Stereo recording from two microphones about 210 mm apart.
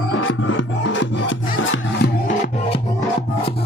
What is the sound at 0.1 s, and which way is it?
Music, 65° left (ahead or behind).